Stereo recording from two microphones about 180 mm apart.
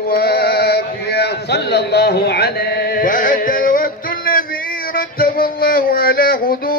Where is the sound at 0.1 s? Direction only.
60° left (ahead or behind).